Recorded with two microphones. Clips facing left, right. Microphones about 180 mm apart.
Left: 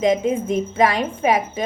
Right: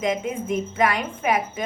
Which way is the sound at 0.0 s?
30° left (ahead or behind).